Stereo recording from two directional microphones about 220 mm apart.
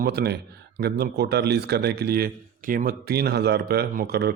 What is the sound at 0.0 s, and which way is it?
A man's voice, 45° right (ahead or behind).